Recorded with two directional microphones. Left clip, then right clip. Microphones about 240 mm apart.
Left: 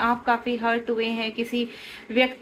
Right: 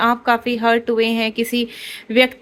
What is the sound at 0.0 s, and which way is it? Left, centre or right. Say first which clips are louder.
Speech: right 6 dB; right.